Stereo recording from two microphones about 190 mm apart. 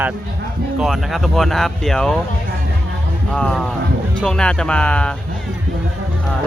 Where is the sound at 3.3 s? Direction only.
5° left (ahead or behind).